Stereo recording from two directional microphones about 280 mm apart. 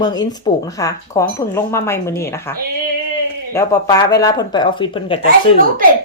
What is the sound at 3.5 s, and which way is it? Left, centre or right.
A woman's voice, centre.